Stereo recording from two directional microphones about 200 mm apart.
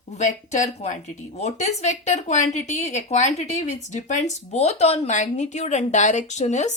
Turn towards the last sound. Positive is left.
turn(degrees=35)  # may be behind; listen again after turning